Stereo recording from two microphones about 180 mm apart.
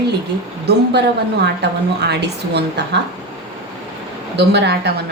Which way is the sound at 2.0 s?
70° right (ahead or behind).